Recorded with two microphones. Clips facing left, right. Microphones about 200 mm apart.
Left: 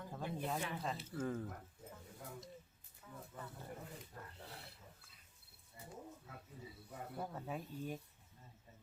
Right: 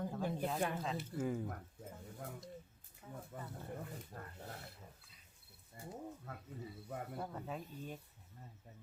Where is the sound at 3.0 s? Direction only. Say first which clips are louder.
Right 4 dB; 30° right (ahead or behind).